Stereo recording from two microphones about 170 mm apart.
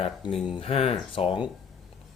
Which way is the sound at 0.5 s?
35° left (ahead or behind).